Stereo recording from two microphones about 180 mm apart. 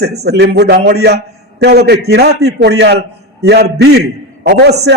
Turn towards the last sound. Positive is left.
turn(degrees=-65)  # may be behind; listen again after turning